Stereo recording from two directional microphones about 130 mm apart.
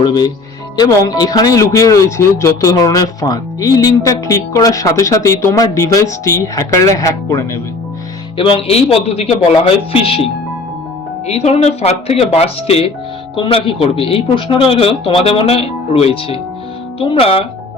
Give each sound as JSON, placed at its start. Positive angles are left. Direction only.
{"t": 0.0, "sound": "speech", "side_deg": 30}
{"t": 8.4, "sound": "speech", "side_deg": 45}
{"t": 11.3, "sound": "speech", "side_deg": 55}